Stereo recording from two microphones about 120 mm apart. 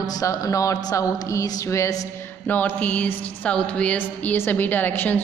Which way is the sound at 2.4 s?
15° left (ahead or behind).